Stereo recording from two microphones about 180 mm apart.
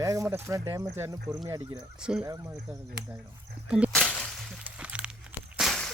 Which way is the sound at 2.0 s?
5° right (ahead or behind).